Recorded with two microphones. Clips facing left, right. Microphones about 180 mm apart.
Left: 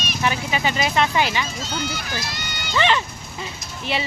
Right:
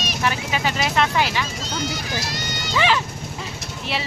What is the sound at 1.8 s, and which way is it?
Speech, 40° right (ahead or behind).